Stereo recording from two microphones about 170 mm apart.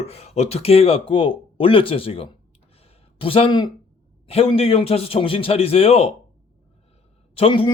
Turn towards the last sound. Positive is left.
turn(degrees=30)  # may be behind; listen again after turning